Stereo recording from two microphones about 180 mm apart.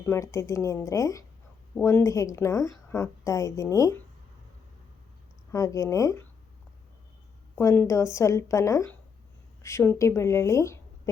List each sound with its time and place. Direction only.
0.0 s a woman's voice: 15° left (ahead or behind)
5.5 s a woman's voice: 15° left (ahead or behind)
7.5 s a woman's voice: 15° left (ahead or behind)